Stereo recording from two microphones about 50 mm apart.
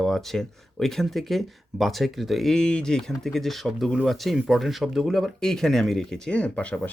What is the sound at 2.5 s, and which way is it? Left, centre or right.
Speech, centre.